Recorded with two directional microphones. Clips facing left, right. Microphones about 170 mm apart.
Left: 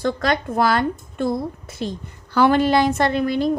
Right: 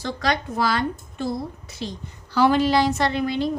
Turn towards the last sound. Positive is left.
turn(degrees=50)  # may be behind; listen again after turning